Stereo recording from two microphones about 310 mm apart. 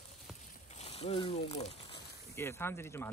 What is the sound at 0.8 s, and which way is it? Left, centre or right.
Speech, centre.